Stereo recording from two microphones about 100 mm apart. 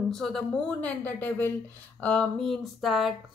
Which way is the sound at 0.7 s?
15° left (ahead or behind).